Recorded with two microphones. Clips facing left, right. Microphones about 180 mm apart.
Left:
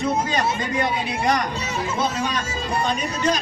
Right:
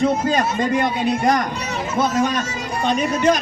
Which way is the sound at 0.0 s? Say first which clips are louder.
Right 4 dB; 50° right (ahead or behind).